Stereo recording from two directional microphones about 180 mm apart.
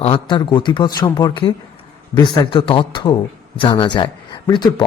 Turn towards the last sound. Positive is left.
turn(degrees=25)  # may be behind; listen again after turning